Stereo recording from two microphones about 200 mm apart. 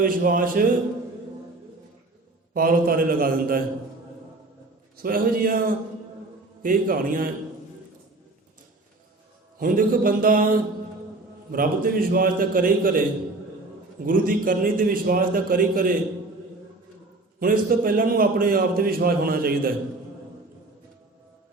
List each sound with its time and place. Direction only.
0.0 s a man's voice: 45° right (ahead or behind)
2.5 s a man's voice: 45° right (ahead or behind)
5.0 s a man's voice: 45° right (ahead or behind)
9.6 s a man's voice: 45° right (ahead or behind)
14.0 s a man's voice: 45° right (ahead or behind)
17.4 s a man's voice: 45° right (ahead or behind)